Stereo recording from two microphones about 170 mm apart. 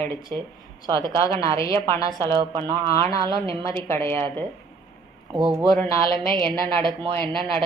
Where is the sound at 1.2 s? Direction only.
20° left (ahead or behind).